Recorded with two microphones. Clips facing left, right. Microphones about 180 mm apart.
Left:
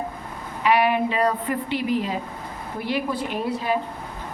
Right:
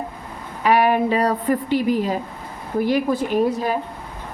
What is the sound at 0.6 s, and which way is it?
A woman's voice, 45° right (ahead or behind).